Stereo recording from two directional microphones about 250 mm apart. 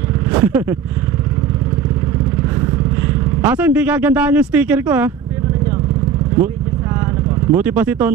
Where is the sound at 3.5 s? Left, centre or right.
Centre.